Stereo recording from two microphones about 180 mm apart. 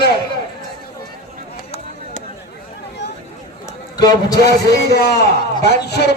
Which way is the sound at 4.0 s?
20° left (ahead or behind).